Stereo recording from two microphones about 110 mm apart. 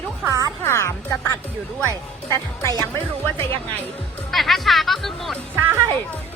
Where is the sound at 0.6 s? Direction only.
25° left (ahead or behind).